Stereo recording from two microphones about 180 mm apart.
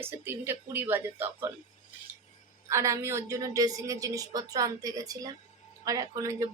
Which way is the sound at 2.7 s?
15° right (ahead or behind).